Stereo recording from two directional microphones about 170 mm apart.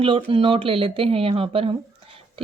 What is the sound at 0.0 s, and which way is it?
Speech, 30° right (ahead or behind).